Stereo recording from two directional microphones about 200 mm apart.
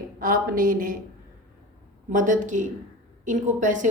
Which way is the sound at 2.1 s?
40° right (ahead or behind).